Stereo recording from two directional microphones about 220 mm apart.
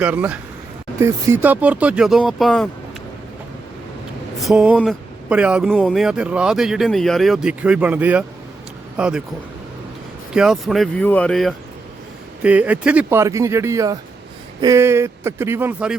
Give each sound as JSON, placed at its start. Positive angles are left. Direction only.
{"t": 0.0, "sound": "speech", "side_deg": -5}
{"t": 4.4, "sound": "speech", "side_deg": -5}
{"t": 10.3, "sound": "speech", "side_deg": -5}